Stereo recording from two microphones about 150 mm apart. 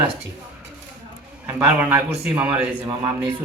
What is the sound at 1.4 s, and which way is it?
A man's voice, 10° right (ahead or behind).